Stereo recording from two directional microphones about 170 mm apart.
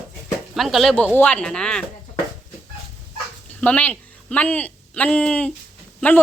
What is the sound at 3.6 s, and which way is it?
A woman's voice, 10° left (ahead or behind).